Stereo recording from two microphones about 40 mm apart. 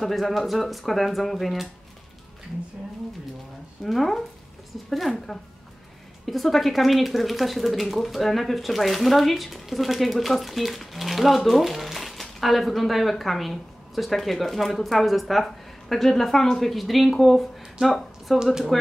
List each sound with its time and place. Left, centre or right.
0.0 s speech: centre
3.8 s speech: centre
18.4 s speech: centre